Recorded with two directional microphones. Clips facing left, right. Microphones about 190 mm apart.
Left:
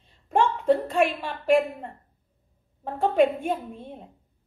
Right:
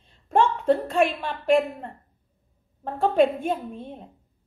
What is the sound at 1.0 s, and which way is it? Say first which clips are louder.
A woman's voice: right 1 dB; 10° left (ahead or behind).